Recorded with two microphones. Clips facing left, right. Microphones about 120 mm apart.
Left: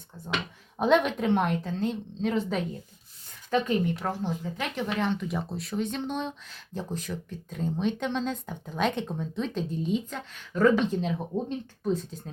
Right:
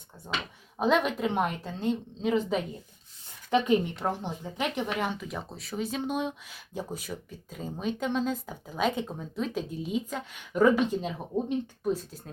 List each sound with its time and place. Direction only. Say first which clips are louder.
0.8 s speech: left 2 dB; centre (ahead or behind)
3.5 s speech: right 1 dB; 15° right (ahead or behind)